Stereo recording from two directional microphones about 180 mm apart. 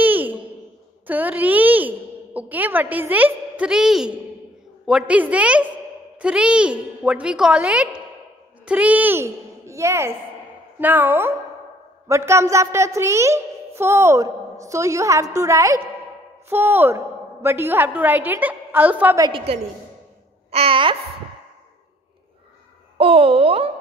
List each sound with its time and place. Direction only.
0.0 s a sound: 10° right (ahead or behind)
1.0 s a woman's voice: 10° right (ahead or behind)
19.2 s speech: 30° right (ahead or behind)
22.9 s speech: 30° right (ahead or behind)